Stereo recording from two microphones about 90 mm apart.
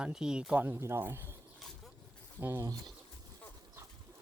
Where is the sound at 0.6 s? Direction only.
25° right (ahead or behind).